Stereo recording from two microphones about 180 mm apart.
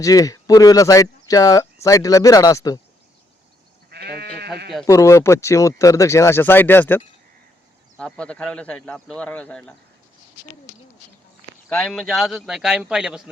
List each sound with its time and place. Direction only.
0.0 s speech: 20° left (ahead or behind)
3.8 s sheep: 65° right (ahead or behind)
4.9 s speech: 15° left (ahead or behind)
11.7 s a man's voice: centre (ahead or behind)